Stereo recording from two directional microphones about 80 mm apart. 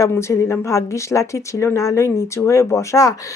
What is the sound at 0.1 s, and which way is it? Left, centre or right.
A woman's voice, left.